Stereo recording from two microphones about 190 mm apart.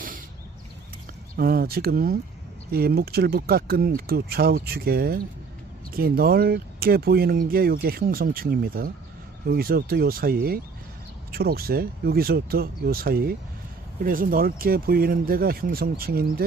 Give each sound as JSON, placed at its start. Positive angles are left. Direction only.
{"t": 1.3, "sound": "speech", "side_deg": -50}